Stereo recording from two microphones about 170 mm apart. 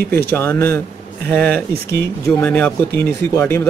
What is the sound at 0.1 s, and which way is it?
Speech, 15° left (ahead or behind).